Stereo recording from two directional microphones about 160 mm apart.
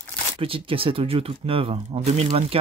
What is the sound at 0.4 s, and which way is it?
Speech, 35° right (ahead or behind).